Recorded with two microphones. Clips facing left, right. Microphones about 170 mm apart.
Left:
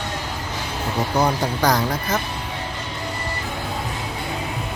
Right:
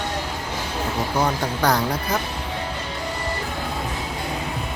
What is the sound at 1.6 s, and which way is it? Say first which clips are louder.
Speech: even; 5° right (ahead or behind).